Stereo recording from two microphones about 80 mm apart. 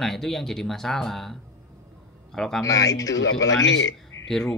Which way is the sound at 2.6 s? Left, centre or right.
Left.